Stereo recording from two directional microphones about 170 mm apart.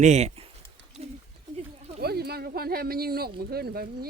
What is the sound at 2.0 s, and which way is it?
Speech, 70° right (ahead or behind).